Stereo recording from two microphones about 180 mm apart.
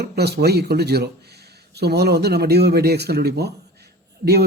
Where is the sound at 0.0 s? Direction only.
65° right (ahead or behind).